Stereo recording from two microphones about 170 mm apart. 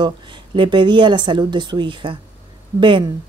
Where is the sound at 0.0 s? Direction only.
30° right (ahead or behind).